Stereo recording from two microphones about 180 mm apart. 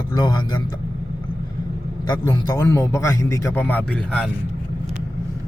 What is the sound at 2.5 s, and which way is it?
A man's voice, 15° left (ahead or behind).